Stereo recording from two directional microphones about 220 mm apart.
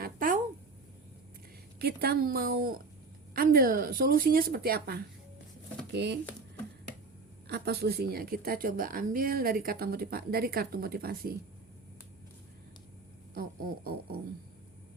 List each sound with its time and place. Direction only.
0.0 s a sound: 40° right (ahead or behind)
1.8 s a woman's voice: 45° right (ahead or behind)
7.4 s a woman's voice: 45° right (ahead or behind)
13.3 s a woman's voice: 45° right (ahead or behind)